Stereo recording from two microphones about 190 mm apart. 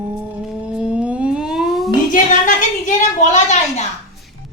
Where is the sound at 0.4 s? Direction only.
5° right (ahead or behind).